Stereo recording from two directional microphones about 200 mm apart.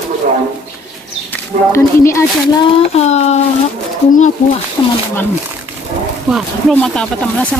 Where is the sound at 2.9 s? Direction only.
35° left (ahead or behind).